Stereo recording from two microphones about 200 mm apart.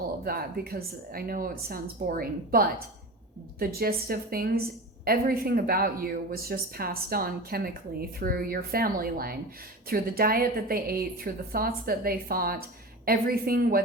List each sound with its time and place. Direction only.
0.3 s a woman's voice: 50° right (ahead or behind)